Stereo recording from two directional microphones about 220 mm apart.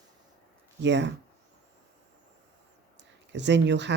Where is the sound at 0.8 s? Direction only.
55° right (ahead or behind).